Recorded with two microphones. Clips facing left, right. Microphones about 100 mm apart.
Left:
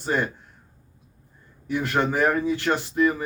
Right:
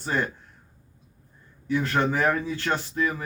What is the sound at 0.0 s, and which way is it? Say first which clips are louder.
Speech: left 2 dB; 15° left (ahead or behind).